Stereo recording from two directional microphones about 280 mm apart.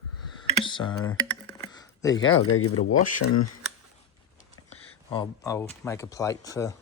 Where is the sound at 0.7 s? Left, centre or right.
Centre.